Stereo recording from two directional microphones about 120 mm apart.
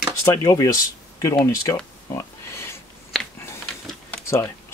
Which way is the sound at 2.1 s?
20° left (ahead or behind).